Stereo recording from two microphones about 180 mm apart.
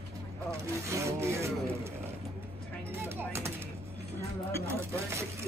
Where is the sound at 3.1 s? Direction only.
15° right (ahead or behind).